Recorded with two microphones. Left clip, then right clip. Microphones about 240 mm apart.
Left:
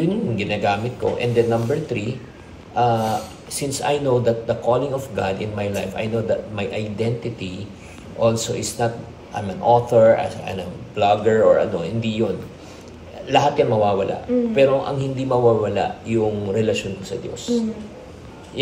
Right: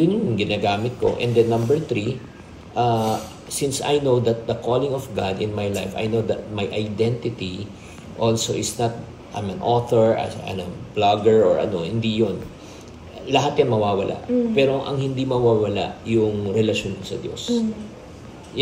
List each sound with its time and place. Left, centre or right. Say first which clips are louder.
0.0 s speech: right 2 dB; centre
10.3 s speech: left 1 dB; centre
11.0 s speech: even; centre
13.4 s speech: left 3 dB; centre